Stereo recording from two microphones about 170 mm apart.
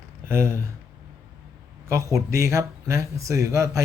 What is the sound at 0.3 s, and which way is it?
Speech, 15° right (ahead or behind).